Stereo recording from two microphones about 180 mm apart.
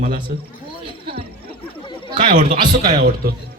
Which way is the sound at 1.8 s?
25° left (ahead or behind).